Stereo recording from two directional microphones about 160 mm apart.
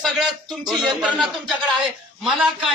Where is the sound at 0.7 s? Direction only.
Centre (ahead or behind).